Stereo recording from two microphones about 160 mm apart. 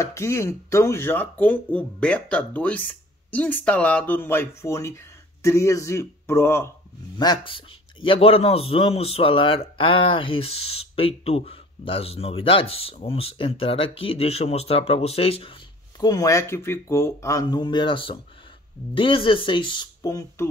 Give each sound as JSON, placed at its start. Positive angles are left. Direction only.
{"t": 0.0, "sound": "speech", "side_deg": 15}
{"t": 7.2, "sound": "a man's voice", "side_deg": 30}
{"t": 16.0, "sound": "a man's voice", "side_deg": 25}